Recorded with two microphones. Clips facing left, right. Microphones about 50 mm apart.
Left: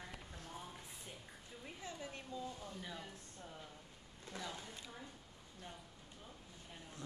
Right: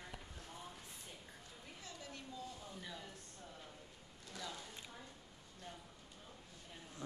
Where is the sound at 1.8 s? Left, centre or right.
Left.